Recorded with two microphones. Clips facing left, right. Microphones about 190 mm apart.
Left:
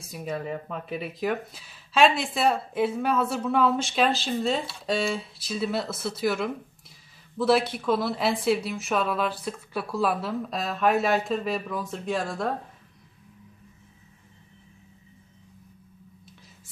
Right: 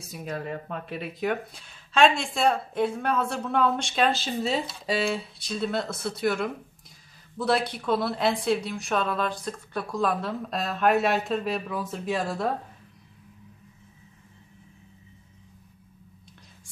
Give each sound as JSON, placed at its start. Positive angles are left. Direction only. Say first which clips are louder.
{"t": 0.0, "sound": "a woman's voice", "louder": "left 2 dB", "side_deg": 0}